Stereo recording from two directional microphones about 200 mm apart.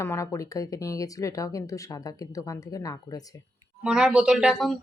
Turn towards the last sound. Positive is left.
turn(degrees=0)  # may be behind; listen again after turning